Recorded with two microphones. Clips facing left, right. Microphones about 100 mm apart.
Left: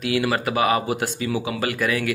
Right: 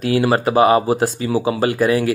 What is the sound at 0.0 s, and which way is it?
Speech, 35° right (ahead or behind).